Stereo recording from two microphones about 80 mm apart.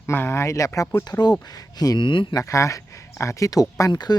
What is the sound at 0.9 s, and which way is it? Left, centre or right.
Speech, left.